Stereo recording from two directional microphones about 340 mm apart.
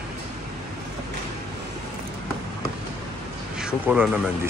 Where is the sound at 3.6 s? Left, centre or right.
Centre.